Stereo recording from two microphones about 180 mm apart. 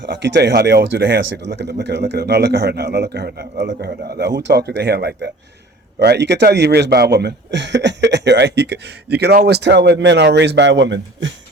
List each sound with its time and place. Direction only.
0.0 s a man's voice: 75° right (ahead or behind); by 1.2 s 55° right (ahead or behind)
1.3 s a man's voice: 75° right (ahead or behind)